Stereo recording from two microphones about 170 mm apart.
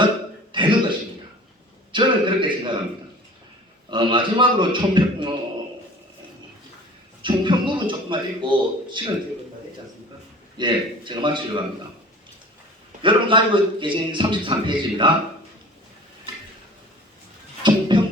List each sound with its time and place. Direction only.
0.5 s throat clearing: 30° right (ahead or behind)
1.9 s a man's voice: 30° right (ahead or behind)
3.8 s a man's voice: 30° right (ahead or behind)
7.2 s a man's voice: 30° right (ahead or behind)
10.6 s a man's voice: 25° right (ahead or behind)
13.0 s a man's voice: 30° right (ahead or behind)
17.6 s music: 30° right (ahead or behind)